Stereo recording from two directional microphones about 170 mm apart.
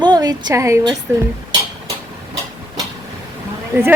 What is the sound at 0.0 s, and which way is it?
Speech, 25° right (ahead or behind).